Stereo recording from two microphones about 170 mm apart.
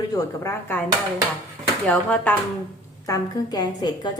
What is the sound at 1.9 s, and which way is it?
Speech, 5° left (ahead or behind).